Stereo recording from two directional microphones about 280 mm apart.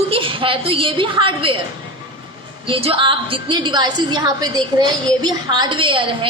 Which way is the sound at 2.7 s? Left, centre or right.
Centre.